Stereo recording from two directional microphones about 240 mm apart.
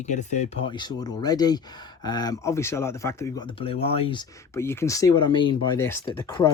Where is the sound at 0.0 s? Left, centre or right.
Left.